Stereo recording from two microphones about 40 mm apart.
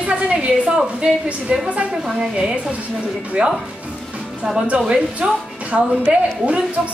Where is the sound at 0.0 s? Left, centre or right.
Right.